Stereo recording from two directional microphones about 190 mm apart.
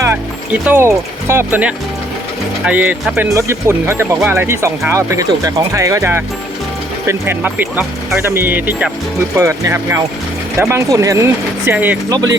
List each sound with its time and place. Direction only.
0.6 s speech: 10° right (ahead or behind)